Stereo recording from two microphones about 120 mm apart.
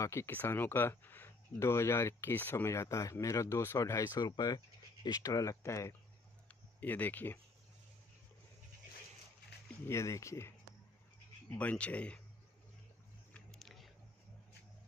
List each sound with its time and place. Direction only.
0.0 s speech: 25° left (ahead or behind)
6.8 s speech: 15° left (ahead or behind)
9.8 s speech: 25° left (ahead or behind)
11.5 s speech: 10° left (ahead or behind)
13.3 s a sound: 5° left (ahead or behind)